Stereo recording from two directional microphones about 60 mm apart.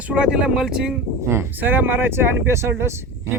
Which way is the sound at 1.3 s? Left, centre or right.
Right.